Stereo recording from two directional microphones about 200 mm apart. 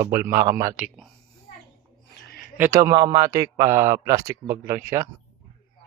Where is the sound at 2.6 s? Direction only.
15° right (ahead or behind).